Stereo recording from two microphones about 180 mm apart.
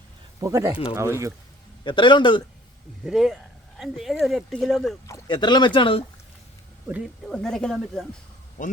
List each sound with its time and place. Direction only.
0.3 s speech: 20° right (ahead or behind)
1.8 s speech: 25° left (ahead or behind)
3.0 s speech: centre (ahead or behind)
5.0 s speech: 20° left (ahead or behind)
6.8 s speech: 10° right (ahead or behind)
7.3 s speech: 5° left (ahead or behind)